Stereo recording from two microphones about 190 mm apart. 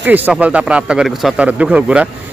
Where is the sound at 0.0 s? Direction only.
10° right (ahead or behind).